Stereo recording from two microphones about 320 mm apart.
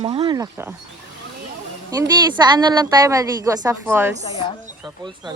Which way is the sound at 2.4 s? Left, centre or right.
Centre.